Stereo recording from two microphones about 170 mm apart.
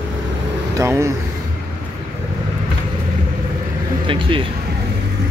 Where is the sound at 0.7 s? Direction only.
15° right (ahead or behind).